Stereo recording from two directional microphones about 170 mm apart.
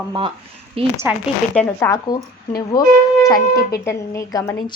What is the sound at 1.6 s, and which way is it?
A woman's voice, 10° left (ahead or behind).